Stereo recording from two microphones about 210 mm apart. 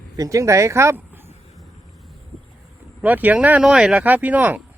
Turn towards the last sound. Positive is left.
turn(degrees=-10)  # may be behind; listen again after turning